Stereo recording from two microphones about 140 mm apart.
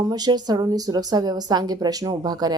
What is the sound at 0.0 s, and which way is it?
Speech, 30° right (ahead or behind).